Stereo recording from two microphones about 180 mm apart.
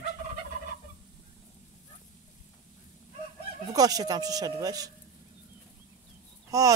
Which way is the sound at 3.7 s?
20° right (ahead or behind).